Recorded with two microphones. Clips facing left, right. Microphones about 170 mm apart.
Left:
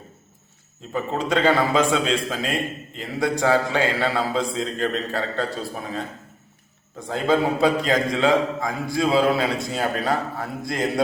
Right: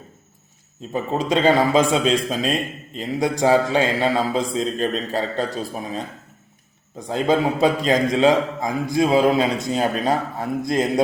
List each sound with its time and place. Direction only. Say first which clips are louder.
0.9 s a man's voice: right 2 dB; 20° right (ahead or behind)